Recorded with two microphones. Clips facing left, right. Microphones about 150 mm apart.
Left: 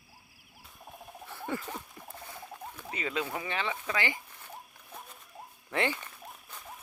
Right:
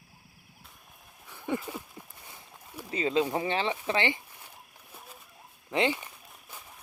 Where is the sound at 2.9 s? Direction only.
30° right (ahead or behind).